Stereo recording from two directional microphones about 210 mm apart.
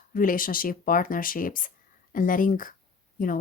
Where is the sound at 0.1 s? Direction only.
40° left (ahead or behind).